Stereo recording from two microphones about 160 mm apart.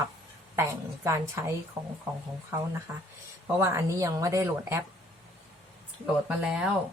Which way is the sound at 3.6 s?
15° right (ahead or behind).